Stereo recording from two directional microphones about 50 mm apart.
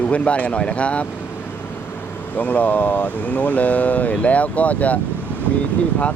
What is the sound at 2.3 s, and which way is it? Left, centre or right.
Speech, left.